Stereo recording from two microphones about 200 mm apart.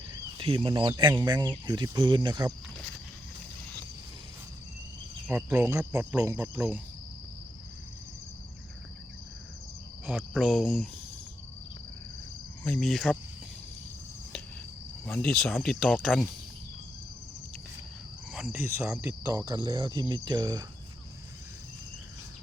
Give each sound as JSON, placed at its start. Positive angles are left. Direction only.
{"t": 0.1, "sound": "speech", "side_deg": -25}
{"t": 1.1, "sound": "cricket", "side_deg": -15}
{"t": 1.6, "sound": "speech", "side_deg": -20}
{"t": 5.3, "sound": "cricket", "side_deg": -10}
{"t": 10.1, "sound": "speech", "side_deg": -5}
{"t": 12.6, "sound": "speech", "side_deg": 5}
{"t": 15.0, "sound": "speech", "side_deg": 5}
{"t": 18.3, "sound": "speech", "side_deg": 0}